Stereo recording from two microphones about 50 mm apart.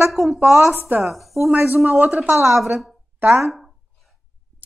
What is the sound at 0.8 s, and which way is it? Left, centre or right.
Speech, right.